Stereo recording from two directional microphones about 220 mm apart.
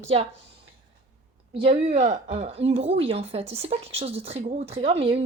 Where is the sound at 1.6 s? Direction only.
30° right (ahead or behind).